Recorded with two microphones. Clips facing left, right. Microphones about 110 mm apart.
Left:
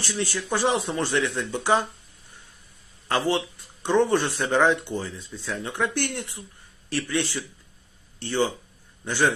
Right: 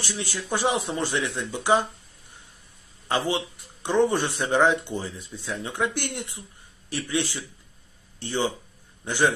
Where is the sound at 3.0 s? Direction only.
15° right (ahead or behind).